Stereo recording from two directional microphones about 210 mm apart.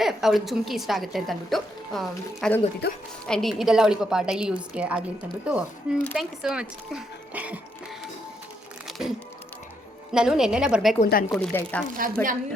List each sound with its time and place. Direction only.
0.0 s a woman's voice: centre (ahead or behind)
2.8 s a woman's voice: 55° left (ahead or behind)
3.2 s a woman's voice: centre (ahead or behind)
8.9 s a sound: centre (ahead or behind)
10.1 s a woman's voice: 5° right (ahead or behind)
11.0 s speech: 40° left (ahead or behind)
11.3 s a woman's voice: 5° left (ahead or behind)